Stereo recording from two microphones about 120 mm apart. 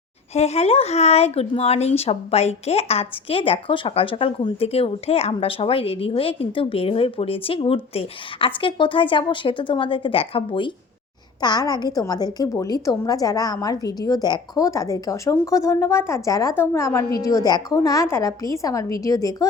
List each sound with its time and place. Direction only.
0.3 s a woman's voice: 65° left (ahead or behind); by 10.7 s 45° left (ahead or behind)
11.3 s a woman's voice: 35° left (ahead or behind)